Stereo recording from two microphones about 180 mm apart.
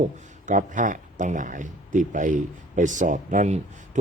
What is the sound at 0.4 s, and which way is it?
Speech, 45° right (ahead or behind).